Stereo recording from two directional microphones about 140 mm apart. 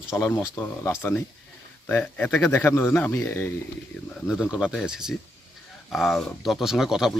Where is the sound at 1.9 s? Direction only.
15° left (ahead or behind).